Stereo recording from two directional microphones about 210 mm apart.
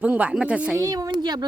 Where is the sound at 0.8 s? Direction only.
15° right (ahead or behind).